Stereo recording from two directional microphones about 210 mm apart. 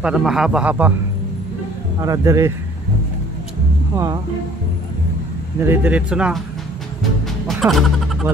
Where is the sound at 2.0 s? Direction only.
15° right (ahead or behind).